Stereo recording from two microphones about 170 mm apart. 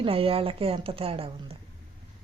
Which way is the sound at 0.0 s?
35° right (ahead or behind).